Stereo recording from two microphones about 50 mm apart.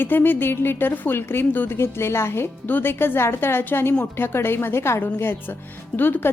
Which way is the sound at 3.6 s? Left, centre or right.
Left.